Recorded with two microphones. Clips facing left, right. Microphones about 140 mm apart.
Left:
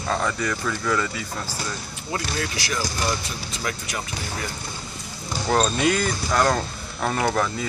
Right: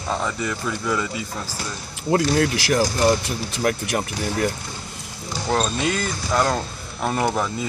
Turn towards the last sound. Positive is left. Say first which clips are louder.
# right 1 dB
turn(degrees=-10)  # may be behind; listen again after turning